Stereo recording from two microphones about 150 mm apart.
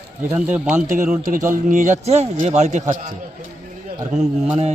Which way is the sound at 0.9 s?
70° right (ahead or behind).